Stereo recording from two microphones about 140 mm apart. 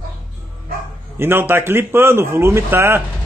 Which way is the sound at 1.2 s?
15° right (ahead or behind).